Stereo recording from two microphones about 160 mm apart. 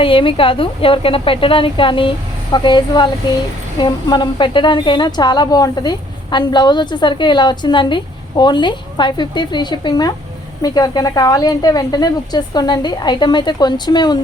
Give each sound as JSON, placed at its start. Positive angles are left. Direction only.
{"t": 0.0, "sound": "a woman's voice", "side_deg": 35}